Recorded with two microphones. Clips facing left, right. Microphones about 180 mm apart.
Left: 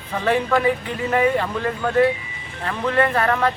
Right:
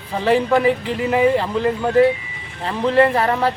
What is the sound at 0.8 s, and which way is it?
Speech, 5° right (ahead or behind).